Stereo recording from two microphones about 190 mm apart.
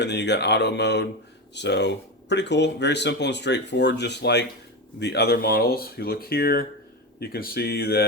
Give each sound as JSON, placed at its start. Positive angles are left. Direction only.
{"t": 0.0, "sound": "speech", "side_deg": 65}